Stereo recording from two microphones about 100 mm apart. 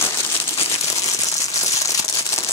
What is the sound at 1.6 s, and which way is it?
Crumpling, 35° left (ahead or behind).